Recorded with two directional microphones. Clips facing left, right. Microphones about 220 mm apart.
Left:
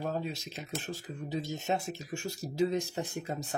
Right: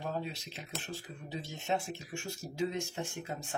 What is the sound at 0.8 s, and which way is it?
Speech, 40° left (ahead or behind).